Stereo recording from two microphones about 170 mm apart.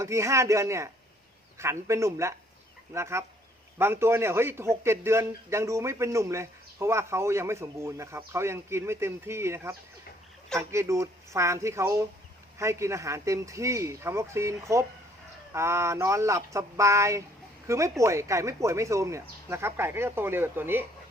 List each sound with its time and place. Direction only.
0.0 s a man's voice: 15° right (ahead or behind)